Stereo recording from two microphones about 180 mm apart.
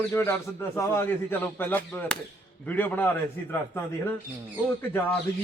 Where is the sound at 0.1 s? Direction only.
15° left (ahead or behind).